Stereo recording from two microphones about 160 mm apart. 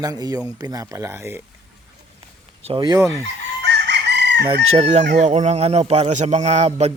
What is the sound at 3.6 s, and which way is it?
Chicken, 90° right.